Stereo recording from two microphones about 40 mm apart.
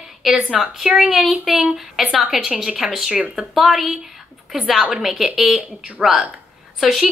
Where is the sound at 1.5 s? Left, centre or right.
Centre.